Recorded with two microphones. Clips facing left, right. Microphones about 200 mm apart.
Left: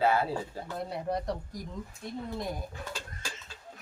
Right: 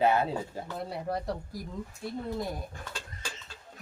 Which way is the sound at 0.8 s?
Centre (ahead or behind).